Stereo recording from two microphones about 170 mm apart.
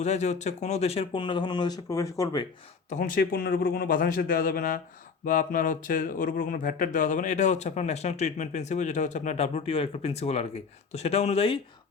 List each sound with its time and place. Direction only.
0.0 s speech: 40° left (ahead or behind); by 2.5 s 25° left (ahead or behind)
2.9 s a man's voice: 55° left (ahead or behind); by 11.6 s 35° left (ahead or behind)